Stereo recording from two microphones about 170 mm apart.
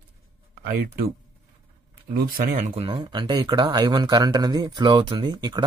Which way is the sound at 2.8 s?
30° right (ahead or behind).